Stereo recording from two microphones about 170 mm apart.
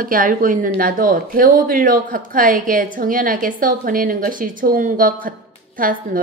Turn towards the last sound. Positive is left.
turn(degrees=-55)  # may be behind; listen again after turning